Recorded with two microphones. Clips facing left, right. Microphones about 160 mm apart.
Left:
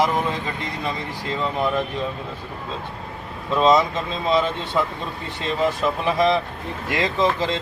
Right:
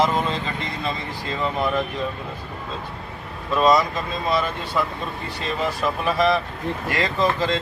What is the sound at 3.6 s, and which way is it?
Speech, 20° left (ahead or behind).